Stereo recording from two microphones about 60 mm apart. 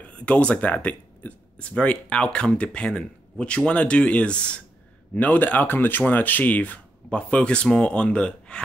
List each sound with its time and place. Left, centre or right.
0.0 s speech: left